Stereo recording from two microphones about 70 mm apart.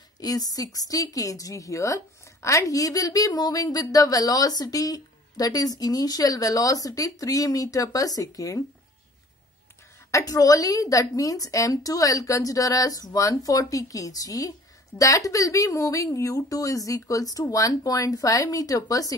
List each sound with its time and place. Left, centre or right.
0.2 s speech: left
10.2 s speech: left